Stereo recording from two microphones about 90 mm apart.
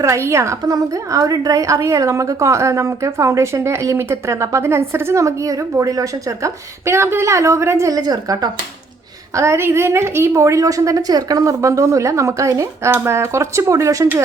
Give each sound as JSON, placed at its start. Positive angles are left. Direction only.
{"t": 0.0, "sound": "a woman's voice", "side_deg": -35}
{"t": 9.3, "sound": "a woman's voice", "side_deg": -30}